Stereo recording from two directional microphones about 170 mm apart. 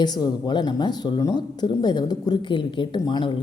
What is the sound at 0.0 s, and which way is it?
Speech, 25° left (ahead or behind).